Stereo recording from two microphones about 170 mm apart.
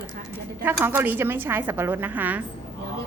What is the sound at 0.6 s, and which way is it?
A woman's voice, 10° right (ahead or behind).